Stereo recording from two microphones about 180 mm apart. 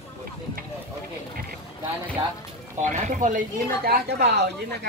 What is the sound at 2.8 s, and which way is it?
Speech, 45° right (ahead or behind).